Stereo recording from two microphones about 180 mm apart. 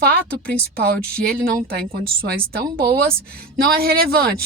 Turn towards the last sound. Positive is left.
turn(degrees=-60)  # may be behind; listen again after turning